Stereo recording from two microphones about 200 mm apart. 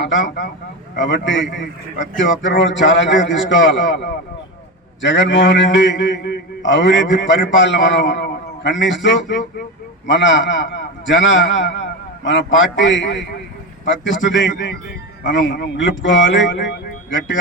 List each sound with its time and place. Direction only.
0.0 s a man's voice: 70° left (ahead or behind)
5.0 s a man's voice: 65° left (ahead or behind)